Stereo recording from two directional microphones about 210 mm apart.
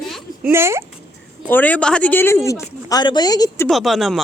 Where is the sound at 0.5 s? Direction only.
10° right (ahead or behind).